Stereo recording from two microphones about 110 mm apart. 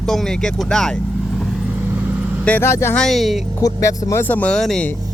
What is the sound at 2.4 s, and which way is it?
Speech, 15° left (ahead or behind).